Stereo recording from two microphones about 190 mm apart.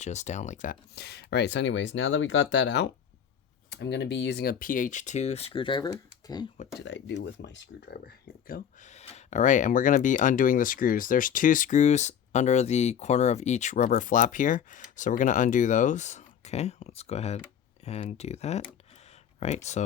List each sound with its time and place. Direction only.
0.0 s speech: 35° left (ahead or behind)
0.9 s speech: 60° left (ahead or behind); by 6.5 s 20° left (ahead or behind)
6.7 s speech: 70° left (ahead or behind); by 19.8 s 35° left (ahead or behind)